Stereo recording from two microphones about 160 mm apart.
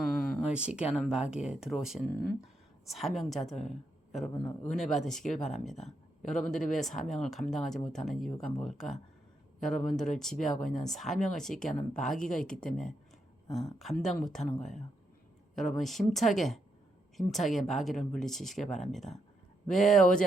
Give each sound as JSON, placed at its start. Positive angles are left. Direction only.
{"t": 0.0, "sound": "a sound", "side_deg": 0}
{"t": 0.9, "sound": "speech", "side_deg": -5}
{"t": 14.6, "sound": "speech", "side_deg": 45}
{"t": 15.5, "sound": "speech", "side_deg": 0}